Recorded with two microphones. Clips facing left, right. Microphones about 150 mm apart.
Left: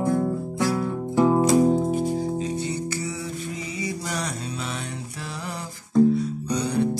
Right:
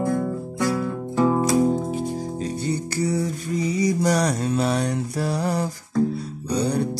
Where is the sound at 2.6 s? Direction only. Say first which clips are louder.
Right 5 dB; 40° right (ahead or behind).